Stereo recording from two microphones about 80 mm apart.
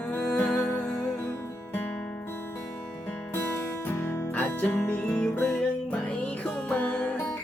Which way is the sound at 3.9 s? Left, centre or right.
Left.